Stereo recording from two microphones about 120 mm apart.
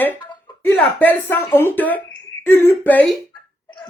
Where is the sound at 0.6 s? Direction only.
15° left (ahead or behind).